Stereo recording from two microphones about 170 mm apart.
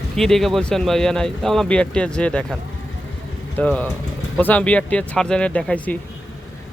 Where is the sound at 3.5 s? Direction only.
10° left (ahead or behind).